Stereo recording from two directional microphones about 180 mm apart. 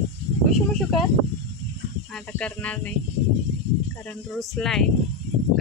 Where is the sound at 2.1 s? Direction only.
5° left (ahead or behind).